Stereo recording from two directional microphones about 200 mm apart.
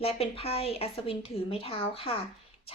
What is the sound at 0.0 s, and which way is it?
A woman's voice, 30° left (ahead or behind).